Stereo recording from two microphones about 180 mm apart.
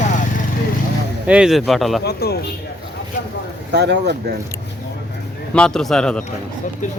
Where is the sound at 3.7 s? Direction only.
70° right (ahead or behind).